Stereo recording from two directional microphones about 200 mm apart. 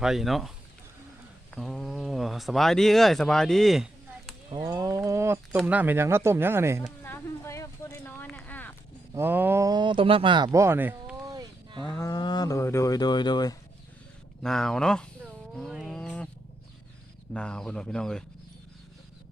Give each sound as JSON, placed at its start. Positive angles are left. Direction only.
{"t": 0.0, "sound": "speech", "side_deg": 0}
{"t": 1.5, "sound": "speech", "side_deg": 0}
{"t": 4.5, "sound": "speech", "side_deg": -20}
{"t": 7.0, "sound": "a sound", "side_deg": 10}
{"t": 9.1, "sound": "speech", "side_deg": -10}
{"t": 11.8, "sound": "speech", "side_deg": 5}
{"t": 12.0, "sound": "speech", "side_deg": 20}
{"t": 14.4, "sound": "speech", "side_deg": 5}
{"t": 15.2, "sound": "a sound", "side_deg": 0}
{"t": 17.3, "sound": "speech", "side_deg": 5}